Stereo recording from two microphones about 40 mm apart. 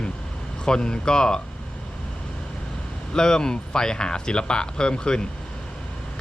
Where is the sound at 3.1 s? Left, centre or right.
Centre.